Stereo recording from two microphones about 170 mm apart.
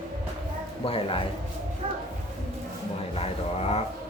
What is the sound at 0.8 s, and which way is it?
Speech, 30° left (ahead or behind).